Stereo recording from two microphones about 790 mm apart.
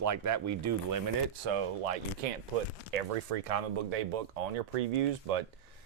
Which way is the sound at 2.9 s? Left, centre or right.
Right.